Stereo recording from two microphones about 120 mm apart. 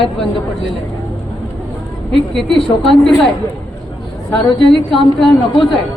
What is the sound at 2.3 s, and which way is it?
Speech, 5° left (ahead or behind).